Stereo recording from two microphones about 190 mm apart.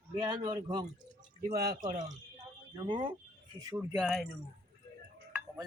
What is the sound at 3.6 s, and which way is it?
Speech, 15° right (ahead or behind).